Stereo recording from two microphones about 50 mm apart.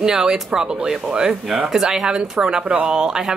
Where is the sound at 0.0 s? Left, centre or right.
Centre.